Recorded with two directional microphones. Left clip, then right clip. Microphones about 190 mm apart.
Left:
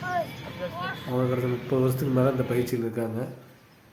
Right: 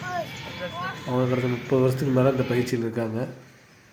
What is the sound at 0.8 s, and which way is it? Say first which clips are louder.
A man's voice: right 2 dB; 5° right (ahead or behind).